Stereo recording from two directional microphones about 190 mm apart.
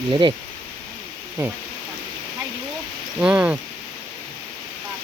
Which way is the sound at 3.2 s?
5° right (ahead or behind).